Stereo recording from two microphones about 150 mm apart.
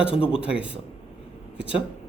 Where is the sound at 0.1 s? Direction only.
40° left (ahead or behind).